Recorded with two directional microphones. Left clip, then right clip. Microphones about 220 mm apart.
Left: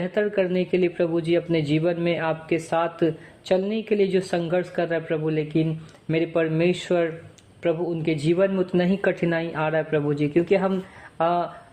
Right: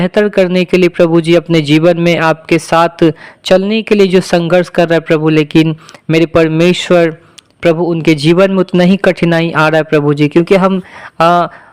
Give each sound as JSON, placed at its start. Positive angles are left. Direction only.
{"t": 0.0, "sound": "a man's voice", "side_deg": -35}